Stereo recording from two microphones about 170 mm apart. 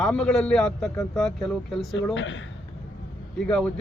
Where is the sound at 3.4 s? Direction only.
5° left (ahead or behind).